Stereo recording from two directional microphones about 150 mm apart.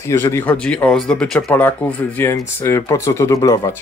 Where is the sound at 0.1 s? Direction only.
15° left (ahead or behind).